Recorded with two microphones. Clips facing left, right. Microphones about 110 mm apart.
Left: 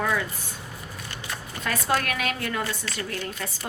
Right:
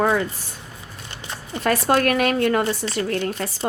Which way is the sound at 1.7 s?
50° right (ahead or behind).